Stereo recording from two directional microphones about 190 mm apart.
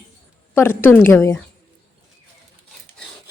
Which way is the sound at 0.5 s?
10° left (ahead or behind).